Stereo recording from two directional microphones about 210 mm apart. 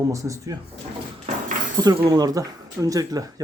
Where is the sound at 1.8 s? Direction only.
20° right (ahead or behind).